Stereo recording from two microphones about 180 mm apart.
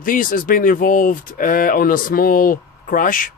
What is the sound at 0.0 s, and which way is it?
A man's voice, 50° left (ahead or behind).